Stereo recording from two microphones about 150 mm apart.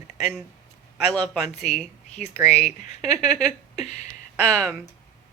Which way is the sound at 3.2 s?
5° left (ahead or behind).